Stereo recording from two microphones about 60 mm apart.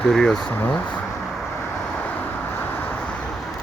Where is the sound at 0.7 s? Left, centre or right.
Left.